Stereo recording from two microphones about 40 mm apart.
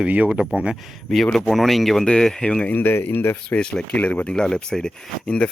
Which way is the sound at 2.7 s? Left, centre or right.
Left.